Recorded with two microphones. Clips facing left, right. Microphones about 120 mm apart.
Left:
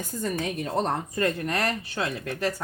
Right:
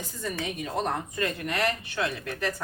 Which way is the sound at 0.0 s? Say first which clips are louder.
Left 4 dB; 45° left (ahead or behind).